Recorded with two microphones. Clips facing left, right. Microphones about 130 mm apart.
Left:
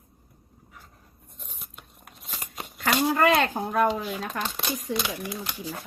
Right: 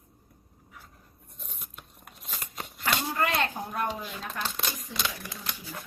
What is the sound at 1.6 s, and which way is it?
Biting, centre (ahead or behind).